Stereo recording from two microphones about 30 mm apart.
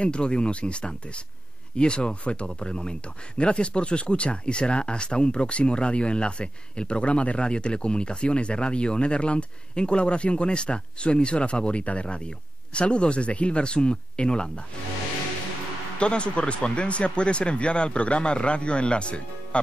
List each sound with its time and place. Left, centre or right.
0.0 s speech: left
16.0 s speech: left